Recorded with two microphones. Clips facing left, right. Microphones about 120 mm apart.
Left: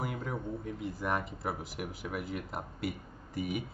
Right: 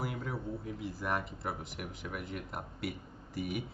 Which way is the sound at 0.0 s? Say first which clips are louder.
Left 1 dB; centre (ahead or behind).